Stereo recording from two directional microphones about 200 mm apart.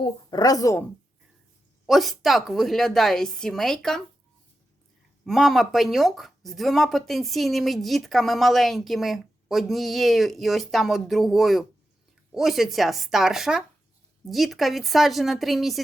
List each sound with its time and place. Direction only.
0.0 s speech: 20° left (ahead or behind)
1.9 s speech: centre (ahead or behind)
5.2 s speech: centre (ahead or behind)